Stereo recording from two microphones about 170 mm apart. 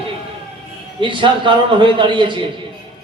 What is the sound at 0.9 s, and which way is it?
A man's voice, 30° right (ahead or behind).